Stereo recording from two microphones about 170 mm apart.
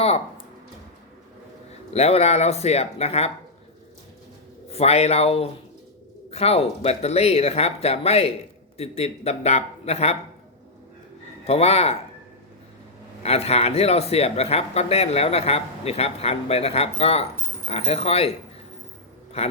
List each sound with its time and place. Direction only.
1.9 s speech: 40° left (ahead or behind)
4.7 s speech: 40° left (ahead or behind)
11.4 s speech: 40° left (ahead or behind)
13.2 s speech: 35° left (ahead or behind)
19.4 s speech: 40° left (ahead or behind)